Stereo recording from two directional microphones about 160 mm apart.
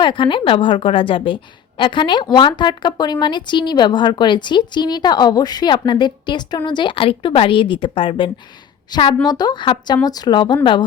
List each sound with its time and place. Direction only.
0.0 s a woman's voice: 30° left (ahead or behind)